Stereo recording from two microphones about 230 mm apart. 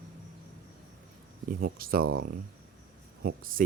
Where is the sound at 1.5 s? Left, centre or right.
Right.